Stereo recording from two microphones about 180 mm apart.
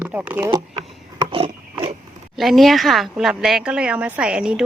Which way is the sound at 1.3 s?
30° right (ahead or behind).